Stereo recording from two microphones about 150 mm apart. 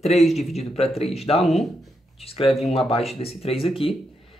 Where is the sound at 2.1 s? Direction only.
40° left (ahead or behind).